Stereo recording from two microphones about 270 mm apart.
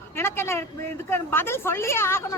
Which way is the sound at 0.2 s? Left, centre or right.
Centre.